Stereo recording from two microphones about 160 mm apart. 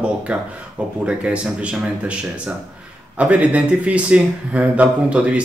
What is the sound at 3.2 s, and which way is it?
Speech, 10° right (ahead or behind).